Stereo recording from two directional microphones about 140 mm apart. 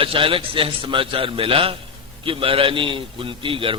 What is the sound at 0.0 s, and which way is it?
A man's voice, 40° right (ahead or behind).